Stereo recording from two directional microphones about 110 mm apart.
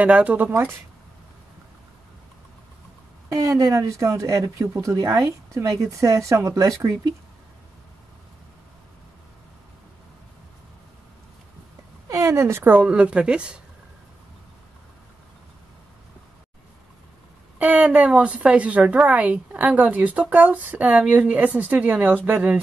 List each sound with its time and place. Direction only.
0.0 s a woman's voice: 15° right (ahead or behind)
3.3 s speech: 30° right (ahead or behind)
12.1 s a woman's voice: 25° right (ahead or behind); by 13.6 s 10° right (ahead or behind)
17.6 s a woman's voice: 10° right (ahead or behind)